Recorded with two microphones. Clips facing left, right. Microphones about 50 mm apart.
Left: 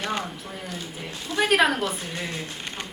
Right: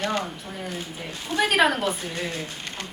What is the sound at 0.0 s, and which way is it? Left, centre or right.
Speech, centre.